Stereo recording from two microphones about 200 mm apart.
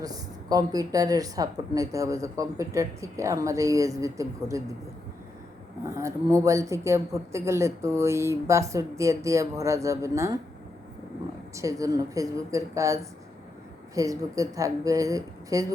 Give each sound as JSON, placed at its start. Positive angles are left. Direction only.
{"t": 0.0, "sound": "a woman's voice", "side_deg": -20}
{"t": 5.8, "sound": "a woman's voice", "side_deg": -15}
{"t": 11.5, "sound": "a woman's voice", "side_deg": -15}